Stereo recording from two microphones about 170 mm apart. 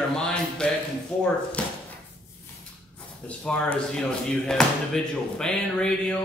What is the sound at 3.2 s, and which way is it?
Speech, 5° left (ahead or behind).